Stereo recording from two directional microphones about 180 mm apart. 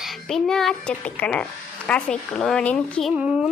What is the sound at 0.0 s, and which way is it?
A woman's voice, 5° left (ahead or behind).